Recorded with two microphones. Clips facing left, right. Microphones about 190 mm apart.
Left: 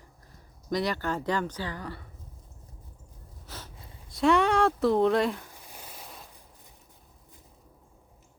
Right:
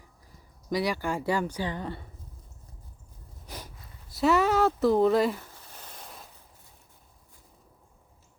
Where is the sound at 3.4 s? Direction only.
15° right (ahead or behind).